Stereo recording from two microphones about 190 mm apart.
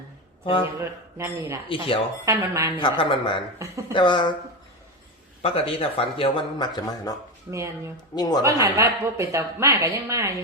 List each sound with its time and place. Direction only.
0.4 s speech: 25° left (ahead or behind)
0.8 s speech: 15° right (ahead or behind)
2.7 s speech: 25° left (ahead or behind)
3.6 s speech: 15° right (ahead or behind)
3.9 s speech: 25° left (ahead or behind)
5.4 s speech: 30° left (ahead or behind)
7.5 s speech: 15° right (ahead or behind)
8.1 s speech: 20° left (ahead or behind)
8.8 s speech: 15° right (ahead or behind)